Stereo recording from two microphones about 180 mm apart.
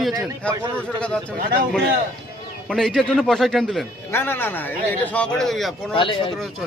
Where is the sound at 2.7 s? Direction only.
Centre (ahead or behind).